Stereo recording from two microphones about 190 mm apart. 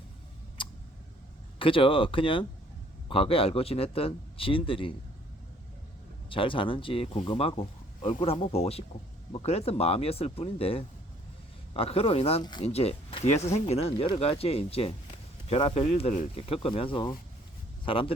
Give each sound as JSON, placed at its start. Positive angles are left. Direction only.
{"t": 0.6, "sound": "a sound", "side_deg": 25}
{"t": 1.5, "sound": "speech", "side_deg": 30}
{"t": 6.3, "sound": "speech", "side_deg": 25}
{"t": 12.6, "sound": "speech", "side_deg": 35}